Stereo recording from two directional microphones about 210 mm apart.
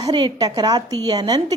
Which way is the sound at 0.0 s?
20° right (ahead or behind).